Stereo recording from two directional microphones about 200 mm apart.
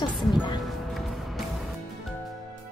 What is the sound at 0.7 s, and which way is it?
Music, centre (ahead or behind).